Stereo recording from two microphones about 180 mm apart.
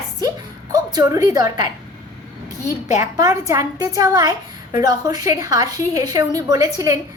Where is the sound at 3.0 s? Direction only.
20° right (ahead or behind).